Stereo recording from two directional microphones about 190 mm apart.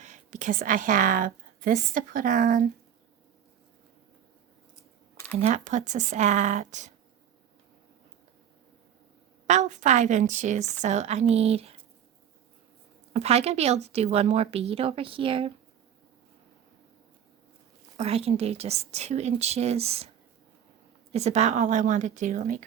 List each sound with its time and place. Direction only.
0.0 s a woman's voice: 40° right (ahead or behind)
5.4 s speech: 35° right (ahead or behind)
9.5 s speech: 40° right (ahead or behind)
13.1 s speech: 35° right (ahead or behind)
17.9 s speech: 35° right (ahead or behind)
21.1 s speech: 35° right (ahead or behind)